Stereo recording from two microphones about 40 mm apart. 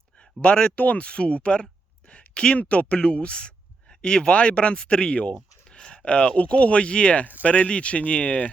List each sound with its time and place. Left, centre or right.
0.4 s speech: left
2.0 s a sound: left
2.6 s speech: left